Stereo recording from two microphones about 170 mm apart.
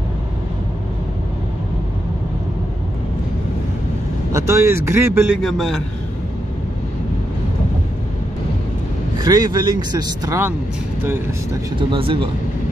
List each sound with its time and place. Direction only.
4.3 s speech: 15° right (ahead or behind)
5.4 s a man's voice: centre (ahead or behind)
9.2 s speech: 25° right (ahead or behind)
11.9 s speech: 30° right (ahead or behind)